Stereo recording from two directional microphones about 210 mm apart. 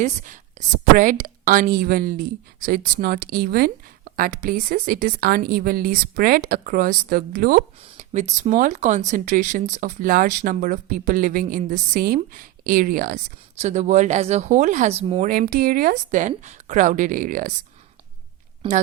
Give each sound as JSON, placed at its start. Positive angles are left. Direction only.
{"t": 0.0, "sound": "speech", "side_deg": -35}
{"t": 7.8, "sound": "speech", "side_deg": -35}
{"t": 15.2, "sound": "speech", "side_deg": -45}